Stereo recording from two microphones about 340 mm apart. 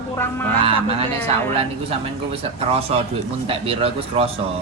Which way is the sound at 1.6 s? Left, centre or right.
Centre.